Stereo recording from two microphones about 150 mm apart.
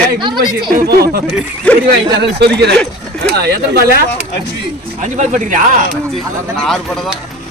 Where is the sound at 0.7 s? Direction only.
85° right.